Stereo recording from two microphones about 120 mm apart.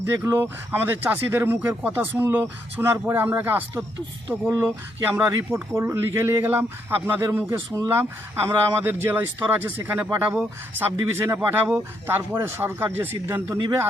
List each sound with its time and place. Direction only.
0.2 s speech: 20° right (ahead or behind)
6.5 s speech: 15° right (ahead or behind)